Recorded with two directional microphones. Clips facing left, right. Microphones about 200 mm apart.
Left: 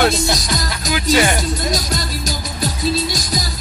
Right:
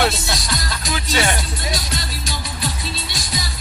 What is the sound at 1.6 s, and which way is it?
Music, 45° left (ahead or behind).